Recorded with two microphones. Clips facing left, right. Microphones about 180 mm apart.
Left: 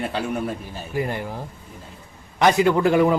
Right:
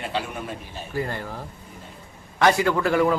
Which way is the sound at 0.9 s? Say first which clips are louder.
Left 3 dB; 15° left (ahead or behind).